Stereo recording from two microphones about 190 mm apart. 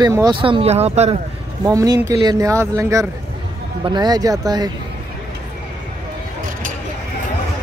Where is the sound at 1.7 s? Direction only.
15° right (ahead or behind).